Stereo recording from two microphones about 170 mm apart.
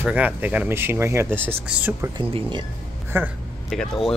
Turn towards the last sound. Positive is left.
turn(degrees=0)  # may be behind; listen again after turning